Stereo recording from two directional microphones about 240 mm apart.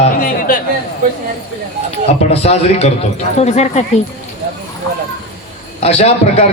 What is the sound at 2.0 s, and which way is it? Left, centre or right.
A man's voice, left.